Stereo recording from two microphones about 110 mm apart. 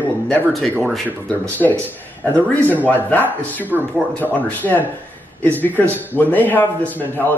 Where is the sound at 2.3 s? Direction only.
15° left (ahead or behind).